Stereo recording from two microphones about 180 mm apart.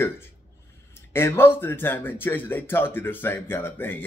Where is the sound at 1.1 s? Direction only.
10° left (ahead or behind).